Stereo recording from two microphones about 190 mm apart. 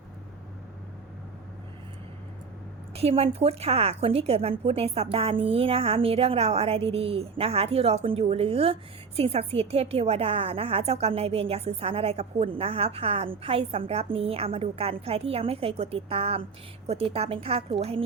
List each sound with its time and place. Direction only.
2.9 s a woman's voice: 30° right (ahead or behind)